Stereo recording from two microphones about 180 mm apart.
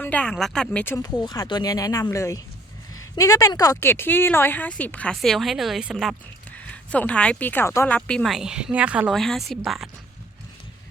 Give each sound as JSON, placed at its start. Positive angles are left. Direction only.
{"t": 0.0, "sound": "speech", "side_deg": 5}
{"t": 0.9, "sound": "a woman's voice", "side_deg": 20}